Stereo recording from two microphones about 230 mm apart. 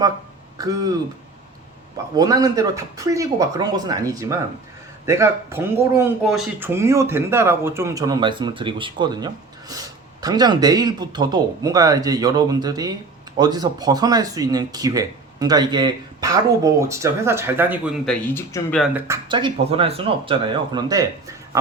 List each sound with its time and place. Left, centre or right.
0.6 s speech: centre
2.1 s speech: centre
18.8 s speech: centre